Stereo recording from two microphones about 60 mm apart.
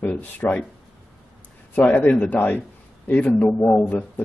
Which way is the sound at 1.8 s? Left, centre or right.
Left.